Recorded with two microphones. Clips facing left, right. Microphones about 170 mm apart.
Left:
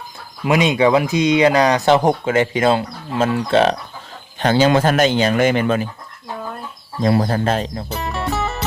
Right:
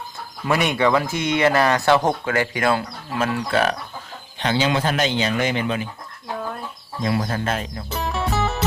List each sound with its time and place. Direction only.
0.4 s speech: 15° left (ahead or behind)
4.4 s speech: 45° left (ahead or behind)
7.0 s speech: 35° left (ahead or behind)
7.9 s music: centre (ahead or behind)